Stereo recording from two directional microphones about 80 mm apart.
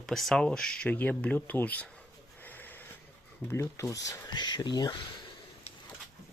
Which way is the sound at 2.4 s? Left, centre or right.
Left.